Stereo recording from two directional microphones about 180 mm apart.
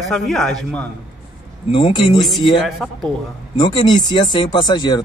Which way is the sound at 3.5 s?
25° left (ahead or behind).